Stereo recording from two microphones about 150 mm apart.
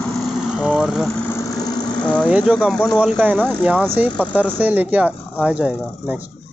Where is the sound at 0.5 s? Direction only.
5° right (ahead or behind).